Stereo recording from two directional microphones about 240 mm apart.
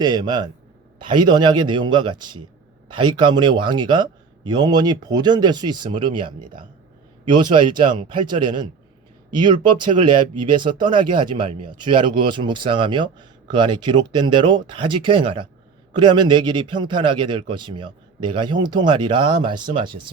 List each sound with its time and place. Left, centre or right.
0.0 s a man's voice: centre